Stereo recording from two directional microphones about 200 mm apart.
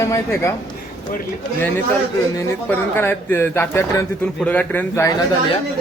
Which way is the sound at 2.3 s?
10° left (ahead or behind).